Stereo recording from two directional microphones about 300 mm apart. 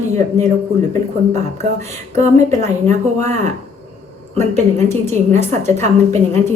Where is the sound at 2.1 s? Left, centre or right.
Right.